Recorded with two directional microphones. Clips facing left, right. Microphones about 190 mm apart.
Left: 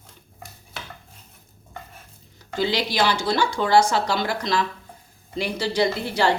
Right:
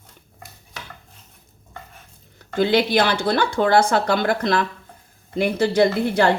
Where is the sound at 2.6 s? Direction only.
55° right (ahead or behind).